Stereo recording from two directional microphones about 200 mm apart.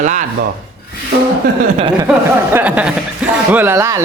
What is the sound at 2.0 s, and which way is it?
A man's voice, 10° right (ahead or behind).